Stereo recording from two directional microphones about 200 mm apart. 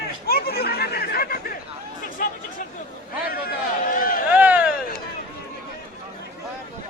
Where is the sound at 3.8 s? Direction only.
45° left (ahead or behind).